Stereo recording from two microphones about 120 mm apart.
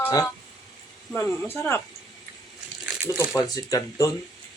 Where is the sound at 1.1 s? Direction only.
20° left (ahead or behind).